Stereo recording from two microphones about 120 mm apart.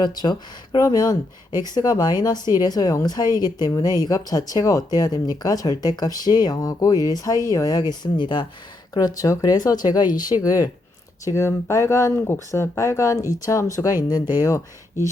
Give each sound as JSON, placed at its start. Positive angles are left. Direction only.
{"t": 0.0, "sound": "speech", "side_deg": 35}